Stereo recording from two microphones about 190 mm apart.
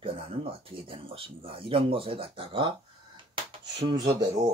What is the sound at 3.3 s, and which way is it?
Dishes, 25° right (ahead or behind).